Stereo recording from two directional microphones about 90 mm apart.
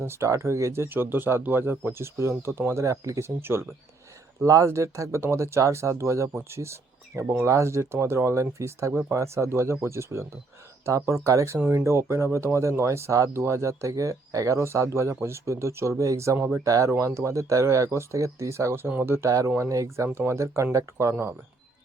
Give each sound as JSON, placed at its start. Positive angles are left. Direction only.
{"t": 0.0, "sound": "speech", "side_deg": -30}